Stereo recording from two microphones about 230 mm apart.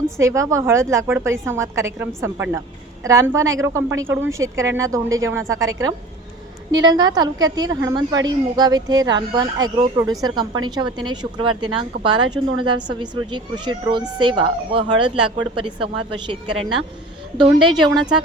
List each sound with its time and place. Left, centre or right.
0.2 s a woman's voice: centre